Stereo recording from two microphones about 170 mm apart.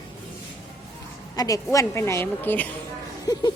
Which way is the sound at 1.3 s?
20° left (ahead or behind).